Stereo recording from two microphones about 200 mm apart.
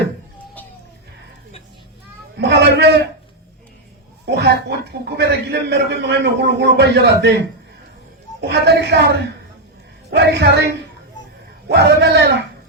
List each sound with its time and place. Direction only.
2.4 s a sound: 55° right (ahead or behind)
4.3 s a man's voice: 55° right (ahead or behind)
8.4 s a woman's voice: 55° right (ahead or behind)
11.7 s a woman's voice: 55° right (ahead or behind)